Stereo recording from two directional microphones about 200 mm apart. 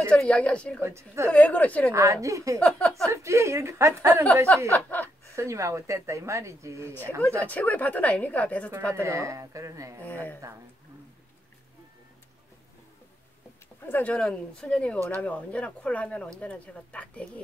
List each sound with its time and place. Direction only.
0.1 s speech: 5° left (ahead or behind)
0.8 s speech: 15° right (ahead or behind)
1.3 s a woman's voice: 5° left (ahead or behind)
1.9 s speech: 15° right (ahead or behind)
4.7 s a woman's voice: 10° left (ahead or behind)
5.3 s speech: 15° right (ahead or behind)
7.2 s a woman's voice: 10° left (ahead or behind)
8.9 s speech: 15° right (ahead or behind)
10.0 s a woman's voice: 10° left (ahead or behind)
13.8 s speech: 10° left (ahead or behind)